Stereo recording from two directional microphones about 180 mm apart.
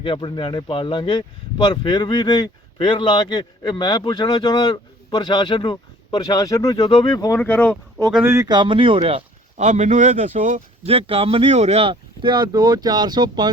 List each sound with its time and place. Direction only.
0.0 s speech: 25° left (ahead or behind)
7.3 s speech: 10° left (ahead or behind)
8.2 s a man's voice: 15° right (ahead or behind)